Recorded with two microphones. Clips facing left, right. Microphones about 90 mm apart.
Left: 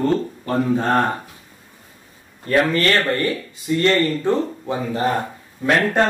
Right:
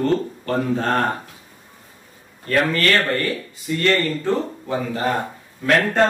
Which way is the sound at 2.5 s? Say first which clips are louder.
Left 2 dB; 25° left (ahead or behind).